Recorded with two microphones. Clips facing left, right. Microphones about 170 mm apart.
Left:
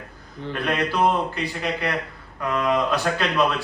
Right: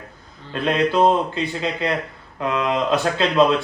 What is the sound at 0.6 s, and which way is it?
A man's voice, 25° right (ahead or behind).